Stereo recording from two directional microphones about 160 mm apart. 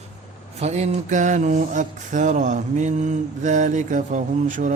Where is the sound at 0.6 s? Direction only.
45° right (ahead or behind).